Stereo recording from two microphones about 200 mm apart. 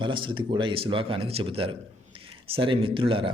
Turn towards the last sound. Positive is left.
turn(degrees=-25)  # may be behind; listen again after turning